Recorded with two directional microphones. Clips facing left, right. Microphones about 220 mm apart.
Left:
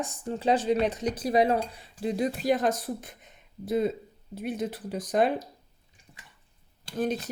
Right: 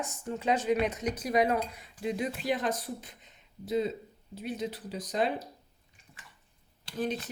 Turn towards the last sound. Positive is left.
turn(degrees=45)  # may be behind; listen again after turning